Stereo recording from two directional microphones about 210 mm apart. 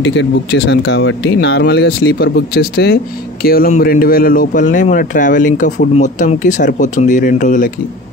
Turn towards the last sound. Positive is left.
turn(degrees=40)  # may be behind; listen again after turning